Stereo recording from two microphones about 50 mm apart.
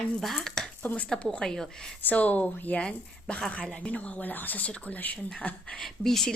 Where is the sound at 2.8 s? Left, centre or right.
Left.